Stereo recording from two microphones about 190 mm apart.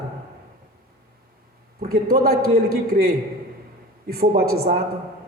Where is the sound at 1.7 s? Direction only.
50° right (ahead or behind).